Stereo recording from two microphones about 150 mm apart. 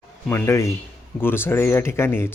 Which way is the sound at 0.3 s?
15° left (ahead or behind).